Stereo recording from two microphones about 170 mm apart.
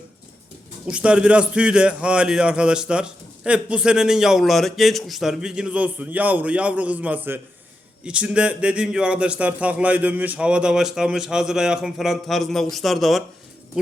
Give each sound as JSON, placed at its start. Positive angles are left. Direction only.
{"t": 0.9, "sound": "a man's voice", "side_deg": -5}